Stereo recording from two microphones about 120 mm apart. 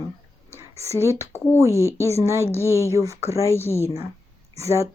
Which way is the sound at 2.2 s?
25° right (ahead or behind).